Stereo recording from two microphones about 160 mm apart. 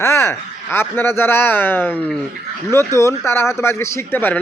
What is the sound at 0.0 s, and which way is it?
A man's voice, 15° left (ahead or behind).